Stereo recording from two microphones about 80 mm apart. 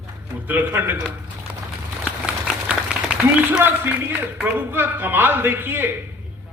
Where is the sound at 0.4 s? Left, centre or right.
Right.